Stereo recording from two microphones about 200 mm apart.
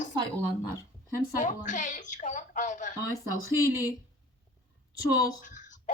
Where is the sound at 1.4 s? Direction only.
40° left (ahead or behind).